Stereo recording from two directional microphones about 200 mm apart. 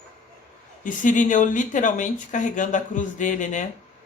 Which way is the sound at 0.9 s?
40° left (ahead or behind).